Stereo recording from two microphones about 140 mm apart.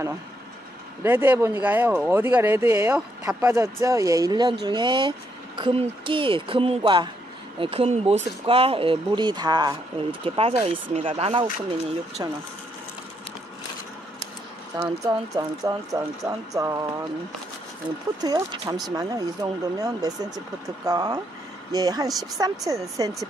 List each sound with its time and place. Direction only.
1.0 s speech: 15° right (ahead or behind); by 9.8 s 30° right (ahead or behind)
10.2 s speech: 40° right (ahead or behind)
12.2 s speech: 30° right (ahead or behind)
14.8 s speech: 25° right (ahead or behind)
18.2 s speech: 30° right (ahead or behind)